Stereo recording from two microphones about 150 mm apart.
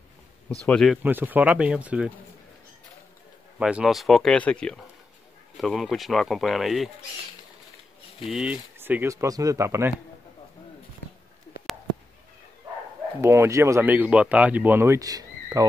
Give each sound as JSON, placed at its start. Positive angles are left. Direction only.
{"t": 0.6, "sound": "speech", "side_deg": 5}
{"t": 1.0, "sound": "speech", "side_deg": -10}
{"t": 3.5, "sound": "speech", "side_deg": -5}
{"t": 8.3, "sound": "speech", "side_deg": -5}
{"t": 8.7, "sound": "speech", "side_deg": -15}
{"t": 13.2, "sound": "speech", "side_deg": -20}